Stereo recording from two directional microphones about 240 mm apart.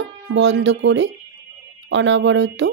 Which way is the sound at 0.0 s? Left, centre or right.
Right.